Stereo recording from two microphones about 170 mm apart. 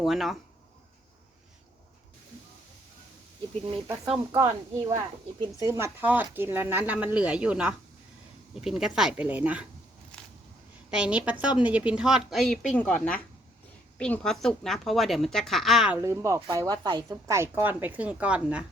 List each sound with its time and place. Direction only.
0.0 s a woman's voice: centre (ahead or behind)
4.3 s a woman's voice: 20° right (ahead or behind)
10.1 s a sound: 5° left (ahead or behind)
10.9 s a woman's voice: 5° right (ahead or behind)
16.0 s a woman's voice: 15° right (ahead or behind)